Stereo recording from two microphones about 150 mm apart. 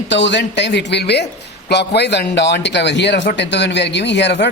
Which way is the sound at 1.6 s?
90° left.